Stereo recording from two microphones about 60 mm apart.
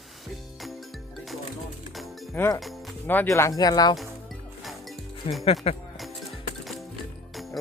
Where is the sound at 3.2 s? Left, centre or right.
Left.